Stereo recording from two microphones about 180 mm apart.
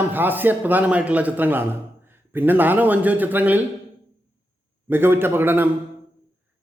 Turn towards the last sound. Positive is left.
turn(degrees=-10)  # may be behind; listen again after turning